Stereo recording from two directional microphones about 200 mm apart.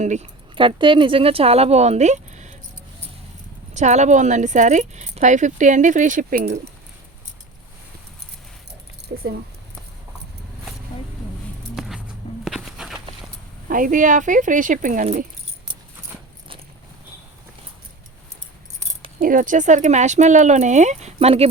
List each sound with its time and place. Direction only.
0.0 s speech: 35° right (ahead or behind)
0.5 s speech: 25° right (ahead or behind)
3.8 s speech: 35° right (ahead or behind)
9.1 s speech: 60° right (ahead or behind)
11.8 s music: centre (ahead or behind)
12.5 s a sound: 5° right (ahead or behind)
13.7 s speech: 45° right (ahead or behind)
19.2 s speech: 40° right (ahead or behind)